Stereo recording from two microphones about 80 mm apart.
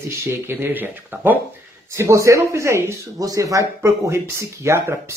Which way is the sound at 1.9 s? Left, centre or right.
Right.